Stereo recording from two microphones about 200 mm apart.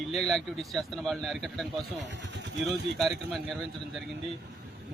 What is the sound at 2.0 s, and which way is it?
Speech, 60° right (ahead or behind).